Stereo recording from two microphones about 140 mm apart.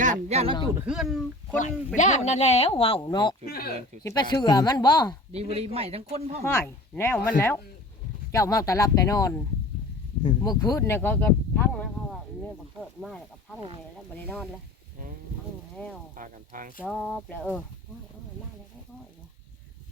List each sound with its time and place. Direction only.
0.0 s speech: 55° right (ahead or behind)
0.9 s speech: 5° right (ahead or behind)
2.0 s speech: 55° left (ahead or behind); by 3.3 s 35° left (ahead or behind)
3.4 s speech: 90° left
4.0 s speech: 30° left (ahead or behind)
5.3 s a man's voice: 45° right (ahead or behind)
6.4 s speech: 20° left (ahead or behind)
13.0 s speech: centre (ahead or behind)
16.1 s speech: 75° right (ahead or behind)
16.8 s speech: 10° left (ahead or behind)